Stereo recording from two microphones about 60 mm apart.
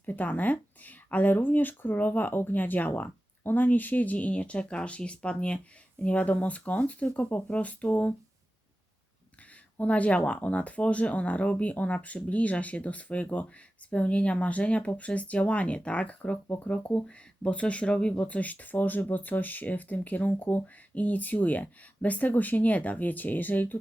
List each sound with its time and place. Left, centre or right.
0.0 s speech: left
9.7 s speech: left